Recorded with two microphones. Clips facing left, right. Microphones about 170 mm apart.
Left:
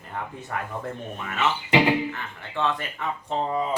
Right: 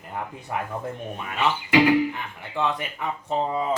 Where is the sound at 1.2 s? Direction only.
15° right (ahead or behind).